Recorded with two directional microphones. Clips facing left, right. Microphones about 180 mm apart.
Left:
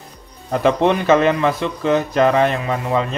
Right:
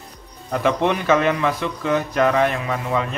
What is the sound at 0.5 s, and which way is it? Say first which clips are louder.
A man's voice: left 4 dB; 30° left (ahead or behind).